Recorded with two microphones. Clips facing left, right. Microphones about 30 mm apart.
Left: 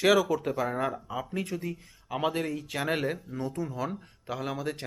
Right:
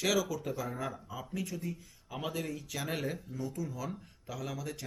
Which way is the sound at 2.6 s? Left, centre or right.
Left.